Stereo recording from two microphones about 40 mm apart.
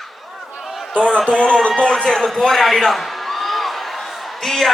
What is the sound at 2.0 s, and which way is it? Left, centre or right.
Speech, centre.